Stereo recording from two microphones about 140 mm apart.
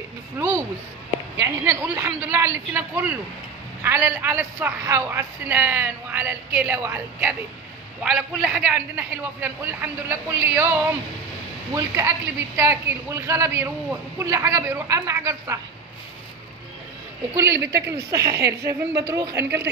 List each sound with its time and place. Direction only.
0.4 s a man's voice: 20° right (ahead or behind)
17.6 s a woman's voice: 20° right (ahead or behind)